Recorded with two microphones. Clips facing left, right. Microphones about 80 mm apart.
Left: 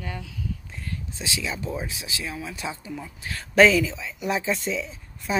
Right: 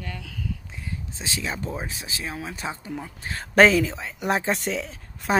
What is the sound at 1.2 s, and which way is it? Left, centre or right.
Speech, right.